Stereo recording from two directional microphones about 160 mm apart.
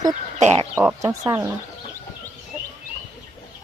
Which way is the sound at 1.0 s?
20° right (ahead or behind).